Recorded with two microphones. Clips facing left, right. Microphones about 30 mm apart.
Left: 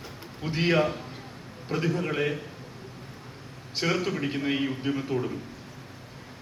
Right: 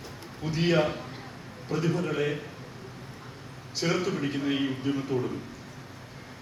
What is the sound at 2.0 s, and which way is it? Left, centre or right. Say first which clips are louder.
Speech: even; left.